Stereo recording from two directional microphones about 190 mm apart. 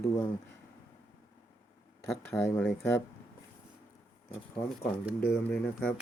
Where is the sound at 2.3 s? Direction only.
15° left (ahead or behind).